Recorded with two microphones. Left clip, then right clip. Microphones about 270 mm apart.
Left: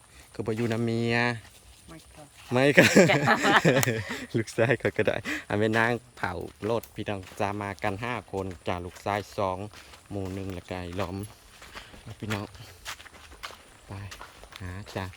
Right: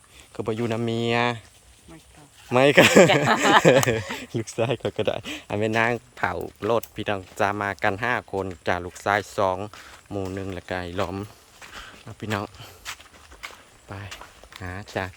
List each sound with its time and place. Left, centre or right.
0.3 s speech: centre
2.5 s speech: centre
13.4 s walk: centre
13.9 s speech: centre